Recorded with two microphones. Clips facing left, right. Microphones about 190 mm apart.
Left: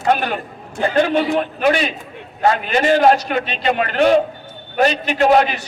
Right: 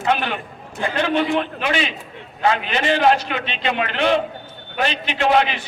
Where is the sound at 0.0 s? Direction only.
40° left (ahead or behind).